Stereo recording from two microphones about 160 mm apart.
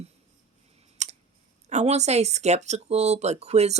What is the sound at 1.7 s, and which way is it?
Speech, 45° right (ahead or behind).